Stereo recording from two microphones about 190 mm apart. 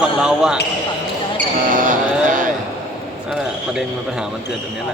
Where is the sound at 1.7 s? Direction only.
45° right (ahead or behind).